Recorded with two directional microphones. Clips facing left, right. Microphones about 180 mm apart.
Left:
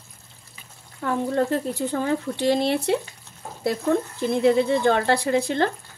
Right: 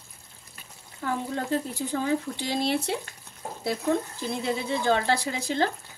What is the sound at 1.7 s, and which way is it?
Speech, 60° left (ahead or behind).